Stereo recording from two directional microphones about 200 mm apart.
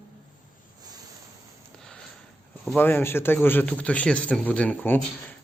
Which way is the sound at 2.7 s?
10° left (ahead or behind).